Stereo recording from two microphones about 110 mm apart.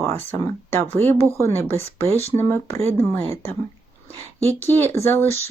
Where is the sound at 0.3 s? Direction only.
20° left (ahead or behind).